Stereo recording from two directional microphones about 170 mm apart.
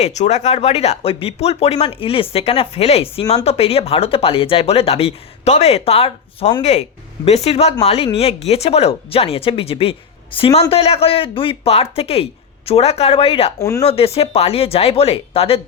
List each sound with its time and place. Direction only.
0.0 s speech: 40° left (ahead or behind)
13.6 s speech: 20° left (ahead or behind)
13.8 s speech: 35° left (ahead or behind)